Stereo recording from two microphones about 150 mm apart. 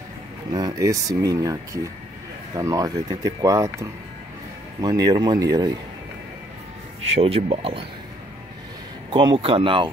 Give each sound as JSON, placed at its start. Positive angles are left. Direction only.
{"t": 0.5, "sound": "speech", "side_deg": -25}
{"t": 7.2, "sound": "speech", "side_deg": -40}
{"t": 9.1, "sound": "speech", "side_deg": -35}